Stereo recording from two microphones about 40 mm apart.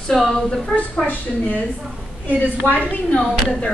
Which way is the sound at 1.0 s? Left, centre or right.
Left.